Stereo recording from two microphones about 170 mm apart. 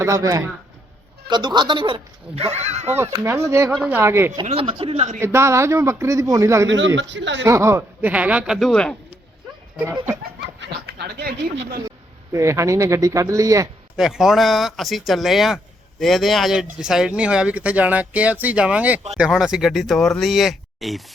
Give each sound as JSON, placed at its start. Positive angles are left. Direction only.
{"t": 0.0, "sound": "a woman's voice", "side_deg": -20}
{"t": 3.0, "sound": "speech", "side_deg": -15}
{"t": 3.7, "sound": "speech", "side_deg": -5}
{"t": 4.4, "sound": "speech", "side_deg": -35}
{"t": 5.2, "sound": "speech", "side_deg": -15}
{"t": 6.7, "sound": "a man's voice", "side_deg": -90}
{"t": 7.4, "sound": "speech", "side_deg": -15}
{"t": 9.7, "sound": "speech", "side_deg": -15}
{"t": 10.6, "sound": "speech", "side_deg": -70}
{"t": 11.8, "sound": "speech", "side_deg": -20}
{"t": 13.9, "sound": "speech", "side_deg": -5}